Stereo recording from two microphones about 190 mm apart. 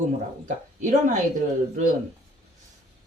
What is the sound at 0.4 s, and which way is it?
Speech, 40° right (ahead or behind).